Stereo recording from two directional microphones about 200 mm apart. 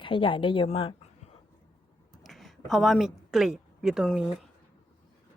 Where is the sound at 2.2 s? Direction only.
Centre (ahead or behind).